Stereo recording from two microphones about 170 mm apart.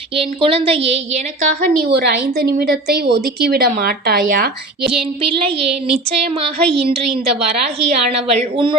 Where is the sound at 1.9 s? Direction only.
70° right (ahead or behind).